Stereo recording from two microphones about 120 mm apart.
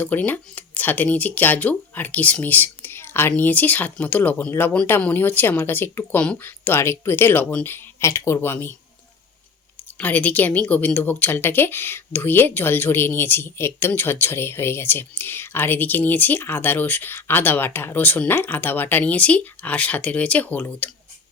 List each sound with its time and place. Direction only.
0.0 s speech: 15° left (ahead or behind)
10.0 s speech: 15° left (ahead or behind)